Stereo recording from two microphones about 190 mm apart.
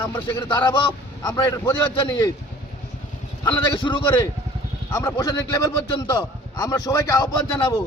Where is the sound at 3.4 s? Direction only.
25° left (ahead or behind).